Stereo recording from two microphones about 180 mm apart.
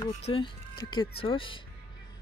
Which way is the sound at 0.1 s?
35° left (ahead or behind).